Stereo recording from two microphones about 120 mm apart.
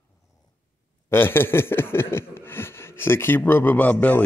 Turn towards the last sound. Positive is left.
turn(degrees=15)  # may be behind; listen again after turning